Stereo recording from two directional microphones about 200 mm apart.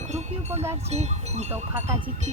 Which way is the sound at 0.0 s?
35° right (ahead or behind).